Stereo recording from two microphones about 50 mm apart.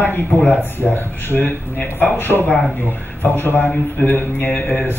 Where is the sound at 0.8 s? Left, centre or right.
Centre.